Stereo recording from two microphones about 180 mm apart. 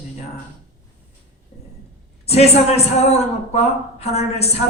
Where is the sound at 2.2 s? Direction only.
35° left (ahead or behind).